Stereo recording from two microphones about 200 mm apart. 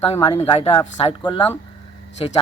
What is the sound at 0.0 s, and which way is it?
Speech, 30° left (ahead or behind).